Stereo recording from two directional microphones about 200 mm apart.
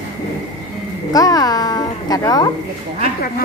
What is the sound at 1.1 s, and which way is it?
A woman's voice, 20° left (ahead or behind).